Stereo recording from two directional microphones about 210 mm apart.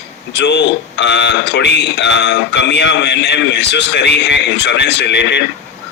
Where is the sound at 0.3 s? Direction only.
55° left (ahead or behind).